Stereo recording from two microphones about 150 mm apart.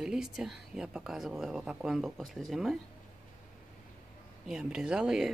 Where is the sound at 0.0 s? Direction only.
5° right (ahead or behind).